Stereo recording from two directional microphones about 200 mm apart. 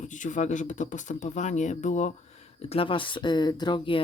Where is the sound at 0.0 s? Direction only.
40° left (ahead or behind).